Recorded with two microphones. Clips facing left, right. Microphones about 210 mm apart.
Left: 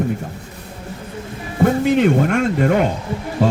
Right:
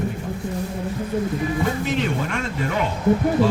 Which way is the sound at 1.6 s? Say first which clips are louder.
Left 8 dB; 50° left (ahead or behind).